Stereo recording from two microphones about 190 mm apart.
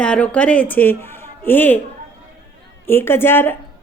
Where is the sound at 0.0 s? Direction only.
5° left (ahead or behind).